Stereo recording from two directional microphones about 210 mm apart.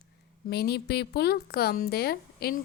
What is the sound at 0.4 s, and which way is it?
A woman's voice, 50° left (ahead or behind).